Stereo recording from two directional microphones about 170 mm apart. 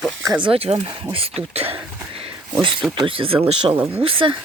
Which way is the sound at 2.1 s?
30° right (ahead or behind).